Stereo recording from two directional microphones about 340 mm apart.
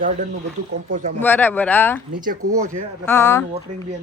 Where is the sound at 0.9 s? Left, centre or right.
Right.